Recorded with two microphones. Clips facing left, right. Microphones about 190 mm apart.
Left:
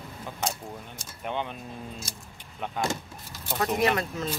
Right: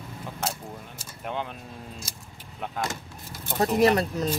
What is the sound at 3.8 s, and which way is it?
Speech, 35° right (ahead or behind).